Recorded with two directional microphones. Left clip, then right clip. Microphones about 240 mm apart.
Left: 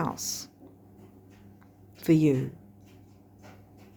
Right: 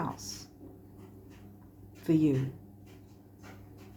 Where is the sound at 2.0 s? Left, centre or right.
Left.